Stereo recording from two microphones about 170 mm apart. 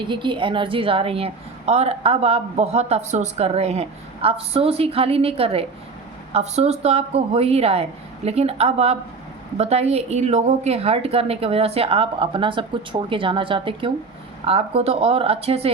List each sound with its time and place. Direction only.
0.0 s a woman's voice: 30° right (ahead or behind)